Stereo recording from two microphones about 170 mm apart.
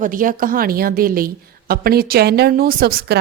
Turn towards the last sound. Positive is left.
turn(degrees=-60)  # may be behind; listen again after turning